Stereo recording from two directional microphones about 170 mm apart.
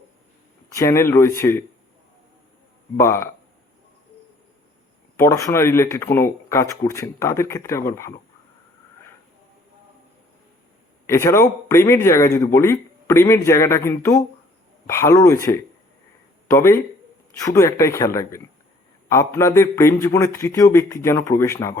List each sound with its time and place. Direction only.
0.8 s speech: 15° left (ahead or behind)
3.0 s speech: 15° left (ahead or behind)
5.1 s speech: 15° left (ahead or behind)
11.0 s speech: 15° left (ahead or behind)